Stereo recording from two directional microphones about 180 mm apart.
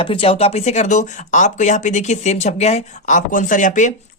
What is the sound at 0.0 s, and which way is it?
Speech, 30° left (ahead or behind).